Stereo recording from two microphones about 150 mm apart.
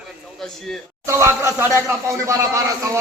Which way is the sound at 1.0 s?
20° right (ahead or behind).